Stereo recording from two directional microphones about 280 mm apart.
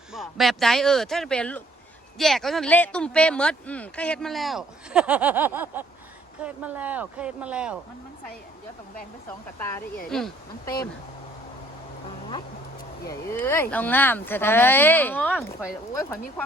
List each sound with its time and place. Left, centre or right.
0.1 s speech: centre
9.6 s speech: centre
13.3 s speech: centre